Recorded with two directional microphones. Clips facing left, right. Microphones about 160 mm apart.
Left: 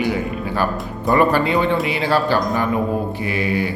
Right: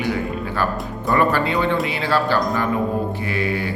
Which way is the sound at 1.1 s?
15° left (ahead or behind).